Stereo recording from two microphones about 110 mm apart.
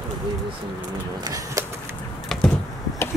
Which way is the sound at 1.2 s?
35° right (ahead or behind).